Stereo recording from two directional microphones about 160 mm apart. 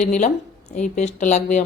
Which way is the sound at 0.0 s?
50° left (ahead or behind).